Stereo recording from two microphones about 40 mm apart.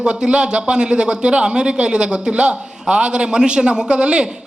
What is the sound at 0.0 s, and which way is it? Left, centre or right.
A man's voice, right.